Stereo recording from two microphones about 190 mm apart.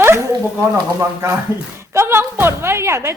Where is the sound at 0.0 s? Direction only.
15° right (ahead or behind).